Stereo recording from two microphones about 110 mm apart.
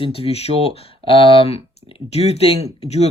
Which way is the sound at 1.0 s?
55° left (ahead or behind).